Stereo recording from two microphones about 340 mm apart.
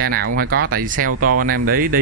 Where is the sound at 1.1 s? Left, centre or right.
Right.